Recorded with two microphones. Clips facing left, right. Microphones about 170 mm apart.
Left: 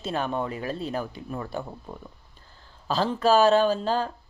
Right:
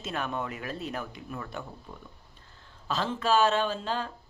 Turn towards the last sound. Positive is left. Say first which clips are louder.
# left 7 dB
turn(degrees=40)  # may be behind; listen again after turning